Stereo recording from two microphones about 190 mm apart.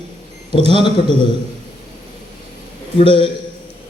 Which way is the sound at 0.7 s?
25° left (ahead or behind).